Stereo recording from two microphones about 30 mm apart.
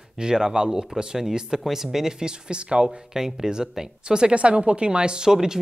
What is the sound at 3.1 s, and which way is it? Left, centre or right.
Speech, centre.